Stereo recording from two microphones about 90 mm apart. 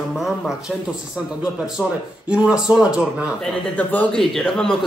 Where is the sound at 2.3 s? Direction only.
10° right (ahead or behind).